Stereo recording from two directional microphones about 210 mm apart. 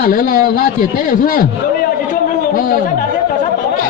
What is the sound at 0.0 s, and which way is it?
A man's voice, 40° left (ahead or behind).